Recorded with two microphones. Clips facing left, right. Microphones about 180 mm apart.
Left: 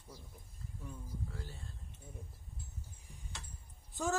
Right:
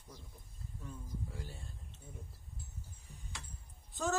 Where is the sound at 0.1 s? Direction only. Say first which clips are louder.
Left 1 dB; 10° left (ahead or behind).